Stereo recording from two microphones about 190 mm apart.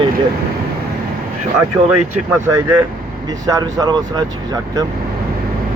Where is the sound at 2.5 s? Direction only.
10° right (ahead or behind).